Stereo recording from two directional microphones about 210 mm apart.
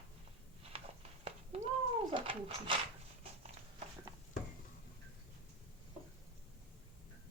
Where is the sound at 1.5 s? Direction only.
30° right (ahead or behind).